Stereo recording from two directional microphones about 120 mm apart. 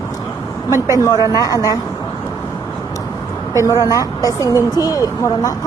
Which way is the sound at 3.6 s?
25° left (ahead or behind).